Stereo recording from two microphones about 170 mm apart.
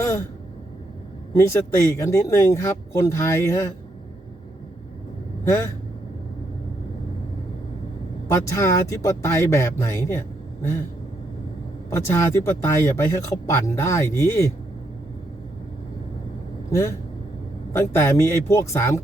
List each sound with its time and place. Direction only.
0.0 s a sound: 15° left (ahead or behind)
1.4 s speech: 15° left (ahead or behind)
5.5 s speech: 15° left (ahead or behind)
8.3 s speech: 15° left (ahead or behind)
11.9 s speech: 15° left (ahead or behind)
17.7 s speech: 15° left (ahead or behind)